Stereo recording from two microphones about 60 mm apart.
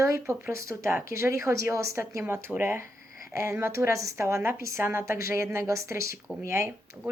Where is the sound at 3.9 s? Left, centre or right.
Right.